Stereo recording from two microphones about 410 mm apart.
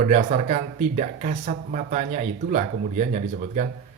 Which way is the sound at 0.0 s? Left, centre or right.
Centre.